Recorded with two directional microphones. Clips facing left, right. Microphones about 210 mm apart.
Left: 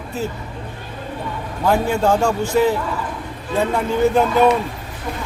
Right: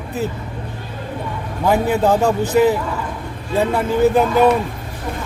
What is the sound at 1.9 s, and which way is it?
Speech, 5° right (ahead or behind).